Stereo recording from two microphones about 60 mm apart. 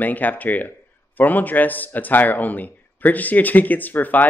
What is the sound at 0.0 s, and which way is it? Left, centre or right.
A man's voice, left.